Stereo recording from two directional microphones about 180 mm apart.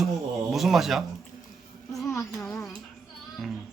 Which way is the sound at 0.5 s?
Centre (ahead or behind).